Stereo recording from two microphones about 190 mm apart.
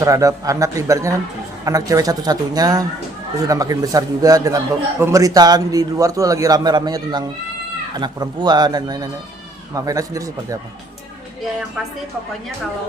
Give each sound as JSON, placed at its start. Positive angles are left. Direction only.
{"t": 0.0, "sound": "a man's voice", "side_deg": -15}